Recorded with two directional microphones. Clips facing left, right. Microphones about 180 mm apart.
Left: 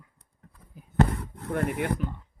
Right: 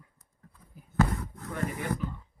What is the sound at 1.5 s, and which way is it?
Speech, 60° left (ahead or behind).